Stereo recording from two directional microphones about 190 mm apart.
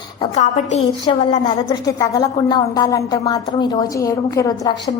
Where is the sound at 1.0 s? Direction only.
20° left (ahead or behind).